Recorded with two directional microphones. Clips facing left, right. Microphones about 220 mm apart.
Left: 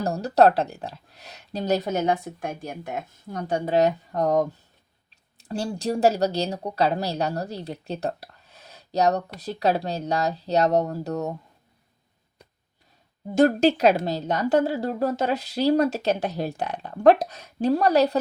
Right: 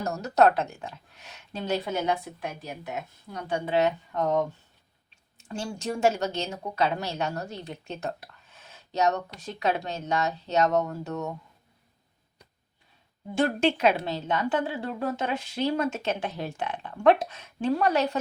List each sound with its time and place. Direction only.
0.0 s a woman's voice: 30° left (ahead or behind)
13.3 s a woman's voice: 40° left (ahead or behind)